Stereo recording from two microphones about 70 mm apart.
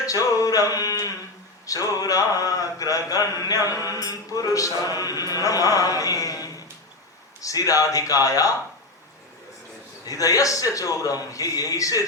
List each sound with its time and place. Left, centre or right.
0.0 s a sound: left
4.9 s chant: left
7.4 s a man's voice: left
10.1 s a man's voice: left